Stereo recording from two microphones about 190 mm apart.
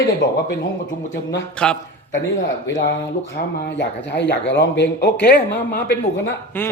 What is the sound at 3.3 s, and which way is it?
Speech, 65° left (ahead or behind).